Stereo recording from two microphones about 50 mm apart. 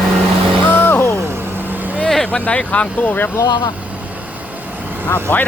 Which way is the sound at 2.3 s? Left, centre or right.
Left.